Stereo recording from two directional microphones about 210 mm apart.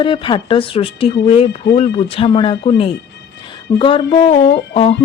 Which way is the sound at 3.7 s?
25° left (ahead or behind).